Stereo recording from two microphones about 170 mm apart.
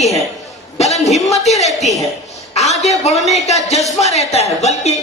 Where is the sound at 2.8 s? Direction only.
40° left (ahead or behind).